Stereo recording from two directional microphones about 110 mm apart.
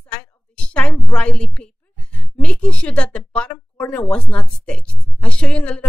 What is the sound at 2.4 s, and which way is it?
A woman's voice, 10° left (ahead or behind).